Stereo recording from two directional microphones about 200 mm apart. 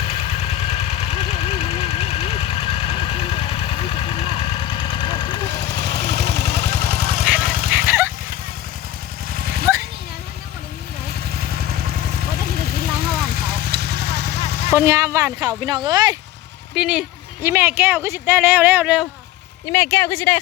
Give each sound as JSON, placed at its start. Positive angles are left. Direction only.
{"t": 0.0, "sound": "engine", "side_deg": 30}
{"t": 5.5, "sound": "vehicle", "side_deg": -55}
{"t": 7.3, "sound": "dog", "side_deg": -45}
{"t": 7.9, "sound": "vehicle", "side_deg": -10}
{"t": 9.3, "sound": "vehicle", "side_deg": -50}
{"t": 11.3, "sound": "vehicle", "side_deg": -50}
{"t": 14.7, "sound": "speech", "side_deg": -15}
{"t": 16.7, "sound": "speech", "side_deg": -5}
{"t": 19.6, "sound": "speech", "side_deg": 10}